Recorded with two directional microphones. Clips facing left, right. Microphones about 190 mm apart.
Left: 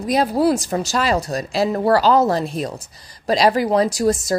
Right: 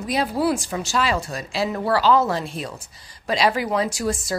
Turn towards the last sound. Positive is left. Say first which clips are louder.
# left 6 dB
turn(degrees=40)  # may be behind; listen again after turning